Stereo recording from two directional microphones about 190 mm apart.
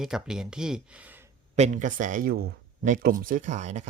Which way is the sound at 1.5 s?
40° right (ahead or behind).